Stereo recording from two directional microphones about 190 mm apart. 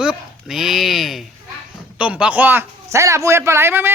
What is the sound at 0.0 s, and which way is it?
A man's voice, 5° right (ahead or behind).